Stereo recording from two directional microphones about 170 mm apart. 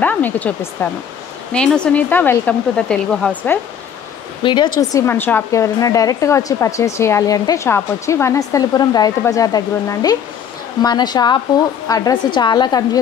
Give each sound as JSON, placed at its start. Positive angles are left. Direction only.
{"t": 0.0, "sound": "speech", "side_deg": 10}
{"t": 4.4, "sound": "speech", "side_deg": 30}
{"t": 4.7, "sound": "a woman's voice", "side_deg": 15}